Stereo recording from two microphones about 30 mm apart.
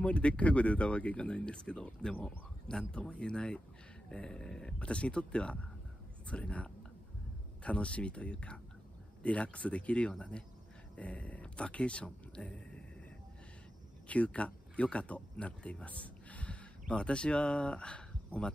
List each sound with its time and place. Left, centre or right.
0.0 s speech: left
4.1 s a sound: left
4.7 s speech: left
14.0 s speech: left
16.9 s speech: left